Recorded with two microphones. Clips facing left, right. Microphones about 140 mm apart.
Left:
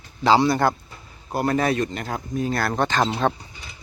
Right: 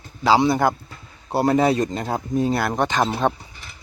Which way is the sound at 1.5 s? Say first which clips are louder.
Right 3 dB; 20° right (ahead or behind).